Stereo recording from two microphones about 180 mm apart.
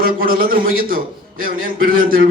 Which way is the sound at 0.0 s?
55° right (ahead or behind).